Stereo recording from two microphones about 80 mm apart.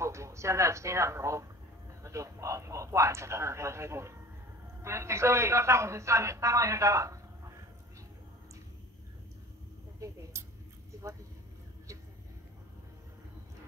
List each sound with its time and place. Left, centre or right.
0.0 s a man's voice: right
9.9 s speech: right